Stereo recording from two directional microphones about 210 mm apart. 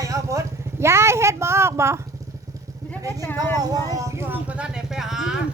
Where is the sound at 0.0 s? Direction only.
15° right (ahead or behind).